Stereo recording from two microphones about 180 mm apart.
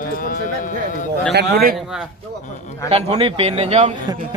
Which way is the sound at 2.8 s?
35° right (ahead or behind).